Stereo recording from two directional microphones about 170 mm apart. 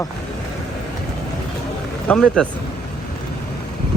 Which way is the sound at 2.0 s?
5° left (ahead or behind).